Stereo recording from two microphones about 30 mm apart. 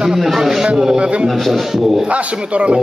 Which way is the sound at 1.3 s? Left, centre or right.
Centre.